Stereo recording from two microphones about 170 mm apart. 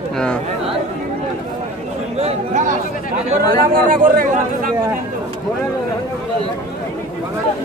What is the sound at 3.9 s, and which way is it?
Speech, 55° right (ahead or behind).